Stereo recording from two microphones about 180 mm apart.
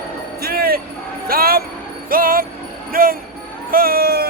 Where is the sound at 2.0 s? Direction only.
50° right (ahead or behind).